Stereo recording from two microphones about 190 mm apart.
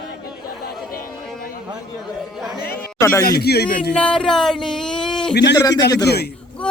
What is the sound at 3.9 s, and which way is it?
Speech, 5° left (ahead or behind).